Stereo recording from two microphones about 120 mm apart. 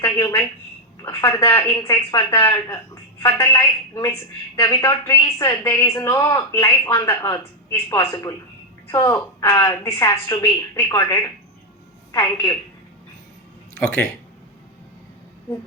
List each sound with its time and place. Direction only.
0.0 s a woman's voice: 30° left (ahead or behind)